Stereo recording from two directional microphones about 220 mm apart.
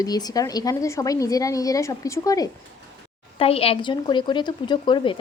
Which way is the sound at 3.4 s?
25° left (ahead or behind).